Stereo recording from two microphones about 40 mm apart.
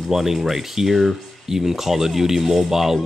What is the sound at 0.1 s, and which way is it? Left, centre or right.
Speech, centre.